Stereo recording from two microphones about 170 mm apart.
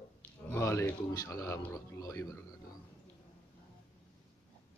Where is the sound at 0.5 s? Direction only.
15° left (ahead or behind).